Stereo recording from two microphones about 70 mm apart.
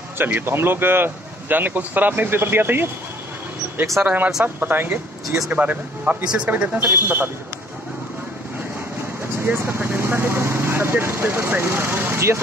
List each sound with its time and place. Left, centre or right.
0.2 s speech: right
4.0 s speech: right
9.4 s speech: right